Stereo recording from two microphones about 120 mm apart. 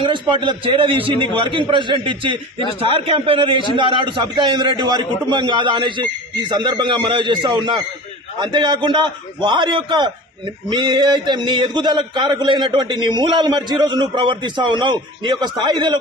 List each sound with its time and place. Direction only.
0.0 s a man's voice: 45° right (ahead or behind)